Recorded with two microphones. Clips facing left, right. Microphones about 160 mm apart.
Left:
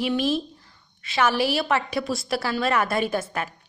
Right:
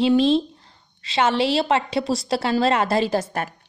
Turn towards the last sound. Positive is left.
turn(degrees=-30)  # may be behind; listen again after turning